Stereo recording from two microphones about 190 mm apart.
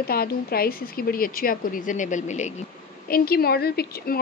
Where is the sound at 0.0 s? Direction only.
55° left (ahead or behind); by 2.5 s 40° left (ahead or behind).